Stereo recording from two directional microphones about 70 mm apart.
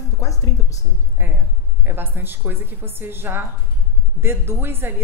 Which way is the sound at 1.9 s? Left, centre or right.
Right.